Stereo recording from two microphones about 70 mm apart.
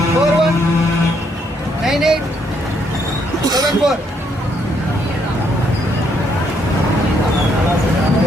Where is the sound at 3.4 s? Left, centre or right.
Right.